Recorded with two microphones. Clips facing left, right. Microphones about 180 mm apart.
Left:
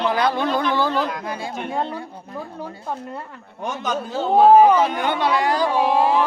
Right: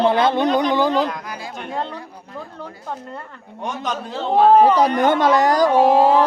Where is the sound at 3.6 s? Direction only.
Centre (ahead or behind).